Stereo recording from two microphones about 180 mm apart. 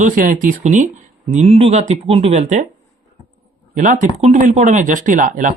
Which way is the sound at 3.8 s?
45° right (ahead or behind).